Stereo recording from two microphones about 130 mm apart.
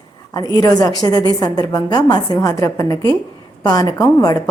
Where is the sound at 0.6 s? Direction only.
30° left (ahead or behind).